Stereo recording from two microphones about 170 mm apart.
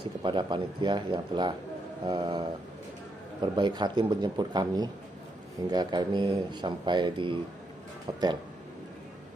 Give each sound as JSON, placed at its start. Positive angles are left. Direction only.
{"t": 0.2, "sound": "speech", "side_deg": -25}
{"t": 3.5, "sound": "speech", "side_deg": -25}